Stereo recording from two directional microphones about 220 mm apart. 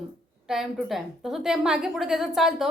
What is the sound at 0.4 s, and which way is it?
A woman's voice, centre (ahead or behind).